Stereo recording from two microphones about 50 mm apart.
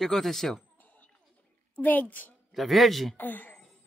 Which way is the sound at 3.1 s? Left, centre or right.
Left.